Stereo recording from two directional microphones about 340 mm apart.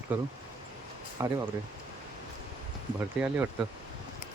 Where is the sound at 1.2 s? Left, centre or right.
Centre.